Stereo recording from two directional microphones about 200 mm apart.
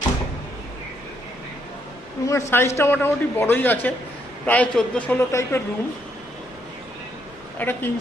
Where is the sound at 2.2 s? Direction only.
15° left (ahead or behind).